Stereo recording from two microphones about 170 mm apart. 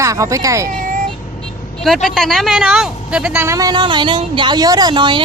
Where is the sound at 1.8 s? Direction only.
Centre (ahead or behind).